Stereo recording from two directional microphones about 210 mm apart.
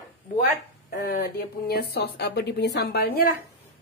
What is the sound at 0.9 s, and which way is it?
Speech, 45° left (ahead or behind).